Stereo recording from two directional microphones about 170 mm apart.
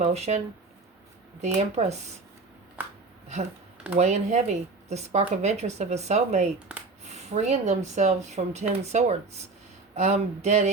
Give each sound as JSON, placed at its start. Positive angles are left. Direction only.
{"t": 0.0, "sound": "a woman's voice", "side_deg": -40}
{"t": 2.8, "sound": "speech", "side_deg": -10}
{"t": 3.9, "sound": "a woman's voice", "side_deg": -40}
{"t": 6.7, "sound": "a sound", "side_deg": -5}
{"t": 7.1, "sound": "a woman's voice", "side_deg": -40}